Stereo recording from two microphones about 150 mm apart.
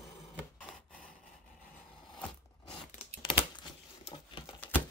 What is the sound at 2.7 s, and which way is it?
Tearing, 35° left (ahead or behind).